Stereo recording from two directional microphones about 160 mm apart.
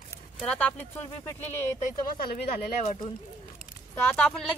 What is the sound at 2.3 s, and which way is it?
Speech, 50° left (ahead or behind).